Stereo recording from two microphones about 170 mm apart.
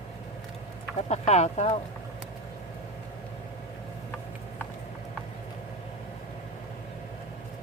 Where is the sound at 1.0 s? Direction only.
40° left (ahead or behind).